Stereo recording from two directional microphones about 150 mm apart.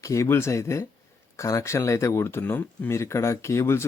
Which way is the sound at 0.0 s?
20° left (ahead or behind).